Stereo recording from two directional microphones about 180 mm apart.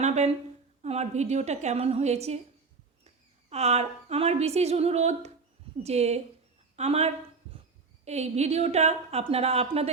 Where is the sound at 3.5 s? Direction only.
35° right (ahead or behind).